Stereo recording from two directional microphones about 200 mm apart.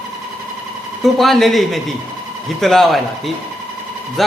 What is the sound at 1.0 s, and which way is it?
A man's voice, centre (ahead or behind).